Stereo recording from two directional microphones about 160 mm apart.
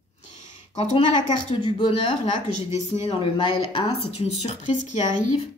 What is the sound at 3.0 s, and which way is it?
Speech, 35° left (ahead or behind).